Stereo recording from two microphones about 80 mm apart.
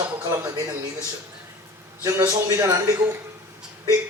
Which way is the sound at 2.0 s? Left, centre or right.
Right.